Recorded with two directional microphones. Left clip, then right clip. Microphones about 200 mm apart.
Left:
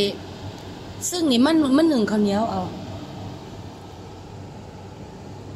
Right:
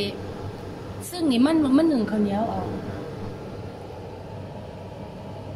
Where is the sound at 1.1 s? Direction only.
30° left (ahead or behind).